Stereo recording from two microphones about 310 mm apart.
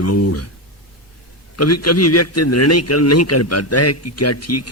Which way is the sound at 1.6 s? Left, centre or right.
Left.